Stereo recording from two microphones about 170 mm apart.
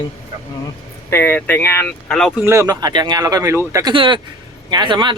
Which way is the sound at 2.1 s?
Centre (ahead or behind).